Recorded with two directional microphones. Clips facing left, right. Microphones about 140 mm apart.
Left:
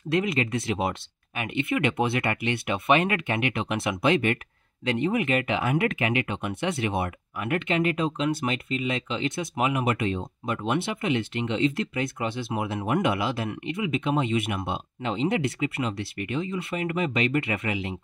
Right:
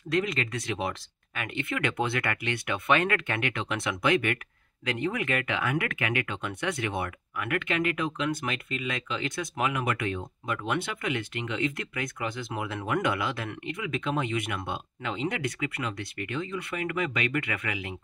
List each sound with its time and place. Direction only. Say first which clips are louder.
0.1 s speech: left 3 dB; 25° left (ahead or behind)